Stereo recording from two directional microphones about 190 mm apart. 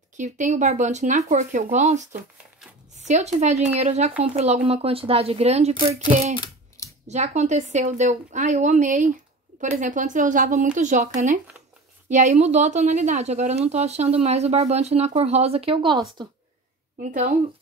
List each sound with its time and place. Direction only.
0.2 s a woman's voice: 40° right (ahead or behind)
6.3 s computer keyboard: 20° left (ahead or behind)
7.1 s a woman's voice: 35° right (ahead or behind)